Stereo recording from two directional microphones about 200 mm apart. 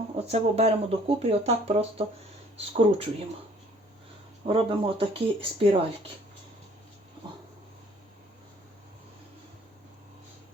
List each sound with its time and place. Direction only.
0.3 s speech: 30° right (ahead or behind)
4.4 s speech: 25° right (ahead or behind)